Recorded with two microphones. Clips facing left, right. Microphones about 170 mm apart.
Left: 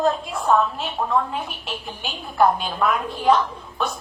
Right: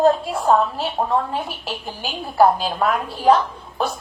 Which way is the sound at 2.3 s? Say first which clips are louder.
Right 3 dB; 35° right (ahead or behind).